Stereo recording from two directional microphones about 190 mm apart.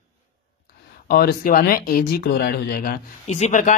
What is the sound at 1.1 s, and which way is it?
A man's voice, 50° left (ahead or behind).